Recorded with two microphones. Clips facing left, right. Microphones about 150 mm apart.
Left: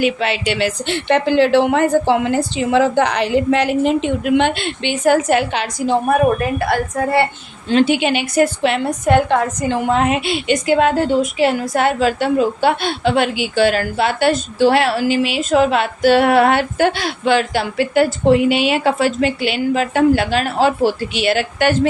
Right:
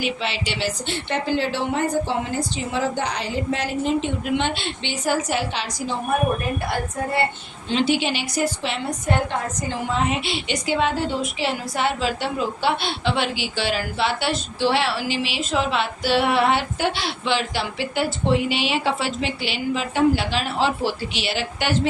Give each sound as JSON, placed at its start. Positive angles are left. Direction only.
{"t": 0.0, "sound": "a woman's voice", "side_deg": 55}
{"t": 6.1, "sound": "a woman's voice", "side_deg": 85}
{"t": 7.7, "sound": "a woman's voice", "side_deg": 55}